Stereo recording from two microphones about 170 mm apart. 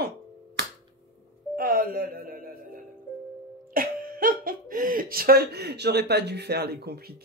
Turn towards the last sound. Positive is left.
turn(degrees=-65)  # may be behind; listen again after turning